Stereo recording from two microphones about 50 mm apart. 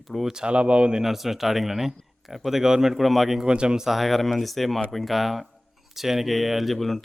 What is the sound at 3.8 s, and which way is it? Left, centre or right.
Speech, centre.